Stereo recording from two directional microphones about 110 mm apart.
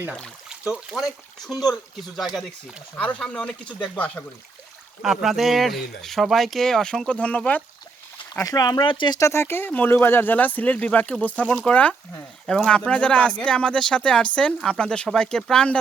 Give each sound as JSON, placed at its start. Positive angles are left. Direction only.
{"t": 0.4, "sound": "speech", "side_deg": -5}
{"t": 3.0, "sound": "speech", "side_deg": 10}
{"t": 5.0, "sound": "speech", "side_deg": 0}
{"t": 8.4, "sound": "speech", "side_deg": 35}
{"t": 9.1, "sound": "speech", "side_deg": 25}